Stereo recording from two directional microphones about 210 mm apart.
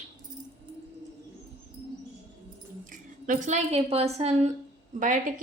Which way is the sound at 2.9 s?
35° right (ahead or behind).